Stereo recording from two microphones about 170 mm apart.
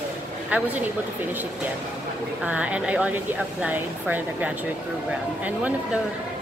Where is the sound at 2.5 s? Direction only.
10° right (ahead or behind).